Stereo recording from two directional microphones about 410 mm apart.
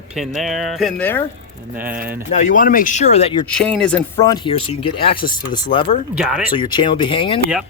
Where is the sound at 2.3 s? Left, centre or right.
Centre.